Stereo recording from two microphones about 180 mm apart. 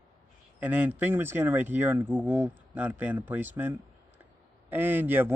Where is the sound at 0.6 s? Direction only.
10° right (ahead or behind).